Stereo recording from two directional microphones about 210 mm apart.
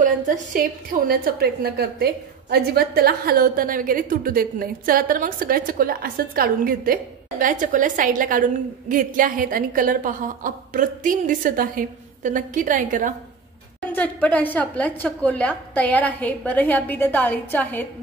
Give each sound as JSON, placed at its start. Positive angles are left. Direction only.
{"t": 0.0, "sound": "a woman's voice", "side_deg": -40}
{"t": 13.9, "sound": "a woman's voice", "side_deg": 5}